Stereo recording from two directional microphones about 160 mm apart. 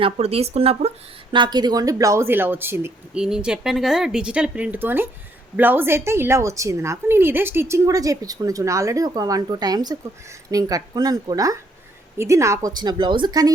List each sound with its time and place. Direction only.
0.0 s speech: 40° right (ahead or behind)
1.3 s a woman's voice: 30° right (ahead or behind)